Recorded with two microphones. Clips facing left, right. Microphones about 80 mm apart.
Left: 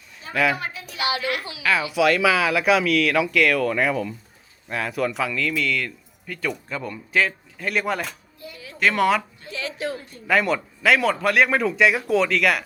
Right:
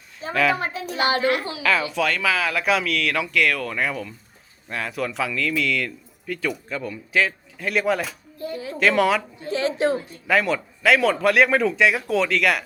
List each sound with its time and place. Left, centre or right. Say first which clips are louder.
0.3 s a woman's voice: right 1 dB; centre
0.6 s a child's voice: right 4 dB; right
1.6 s speech: left 3 dB; centre
8.4 s music: right 10 dB; right
8.8 s speech: right 1 dB; centre
9.5 s a sound: right 8 dB; right
10.2 s speech: left 1 dB; centre